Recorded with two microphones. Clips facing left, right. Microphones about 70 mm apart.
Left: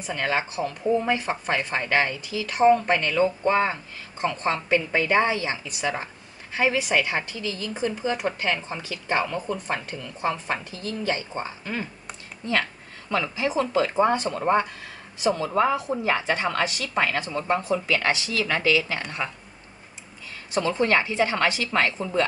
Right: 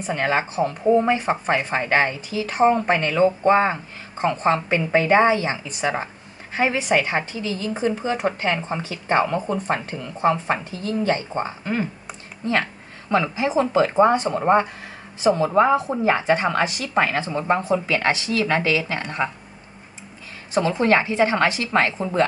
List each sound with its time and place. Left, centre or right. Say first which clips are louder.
0.0 s a woman's voice: right 4 dB; right
13.1 s a woman's voice: right 5 dB; right
20.5 s a woman's voice: right 4 dB; right